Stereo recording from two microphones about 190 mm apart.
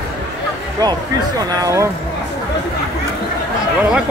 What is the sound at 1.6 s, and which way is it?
Speech, 15° right (ahead or behind).